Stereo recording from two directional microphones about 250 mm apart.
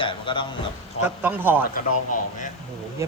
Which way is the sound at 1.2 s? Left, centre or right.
Centre.